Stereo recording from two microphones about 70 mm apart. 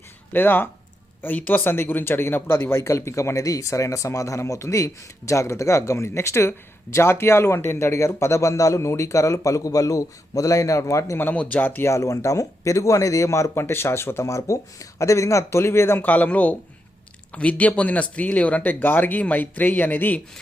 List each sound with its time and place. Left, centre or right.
0.3 s speech: left
11.2 s speech: left
11.9 s speech: left